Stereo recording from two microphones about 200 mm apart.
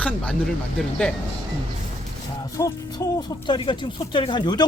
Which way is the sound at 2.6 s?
15° left (ahead or behind).